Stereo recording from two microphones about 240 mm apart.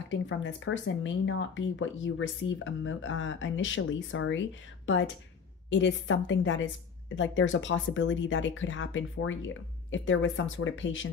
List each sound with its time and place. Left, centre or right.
0.1 s speech: left